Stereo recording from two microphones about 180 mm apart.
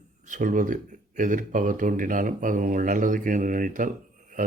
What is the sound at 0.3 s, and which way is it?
Speech, 45° right (ahead or behind).